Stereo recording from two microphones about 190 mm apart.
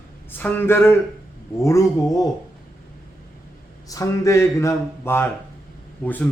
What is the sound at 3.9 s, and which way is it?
Speech, 15° left (ahead or behind).